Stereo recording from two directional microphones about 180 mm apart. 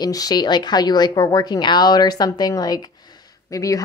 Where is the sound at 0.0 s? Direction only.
20° left (ahead or behind).